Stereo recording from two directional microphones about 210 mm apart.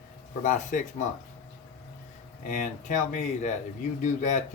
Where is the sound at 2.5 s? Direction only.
40° left (ahead or behind).